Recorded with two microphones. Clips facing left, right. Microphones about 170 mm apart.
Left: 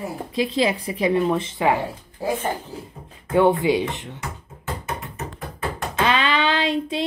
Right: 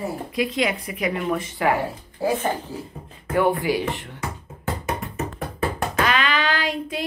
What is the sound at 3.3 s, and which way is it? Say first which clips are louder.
Speech: left 3 dB; 20° left (ahead or behind).